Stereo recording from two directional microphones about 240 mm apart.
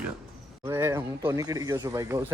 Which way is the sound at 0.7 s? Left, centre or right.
Centre.